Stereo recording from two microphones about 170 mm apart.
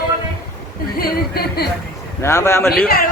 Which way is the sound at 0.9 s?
65° left (ahead or behind).